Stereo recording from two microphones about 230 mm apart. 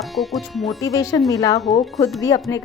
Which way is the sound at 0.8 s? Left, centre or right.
Centre.